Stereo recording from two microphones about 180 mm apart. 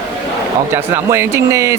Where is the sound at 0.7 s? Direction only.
15° right (ahead or behind).